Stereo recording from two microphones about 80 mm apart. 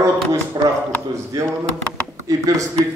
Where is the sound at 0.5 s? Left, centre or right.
Right.